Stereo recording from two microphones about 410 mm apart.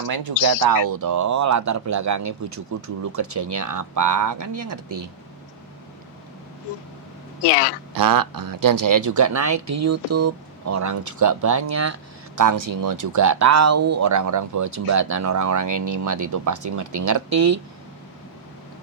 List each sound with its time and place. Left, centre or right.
0.1 s speech: right
7.9 s speech: right